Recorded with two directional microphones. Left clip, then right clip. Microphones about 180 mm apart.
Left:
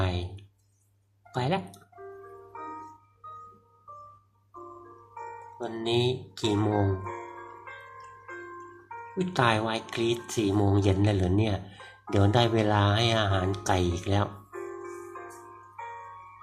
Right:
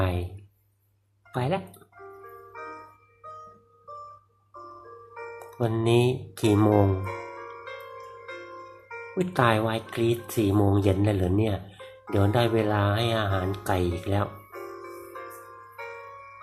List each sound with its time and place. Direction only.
0.0 s a sound: 5° right (ahead or behind)
1.3 s speech: 5° right (ahead or behind)
5.1 s speech: 20° right (ahead or behind)
9.3 s speech: 5° right (ahead or behind)
15.7 s music: 25° right (ahead or behind)